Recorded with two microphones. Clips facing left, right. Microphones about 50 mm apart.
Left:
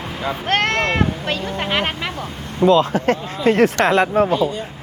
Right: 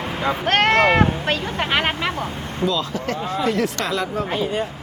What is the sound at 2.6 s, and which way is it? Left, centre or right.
A woman's voice, left.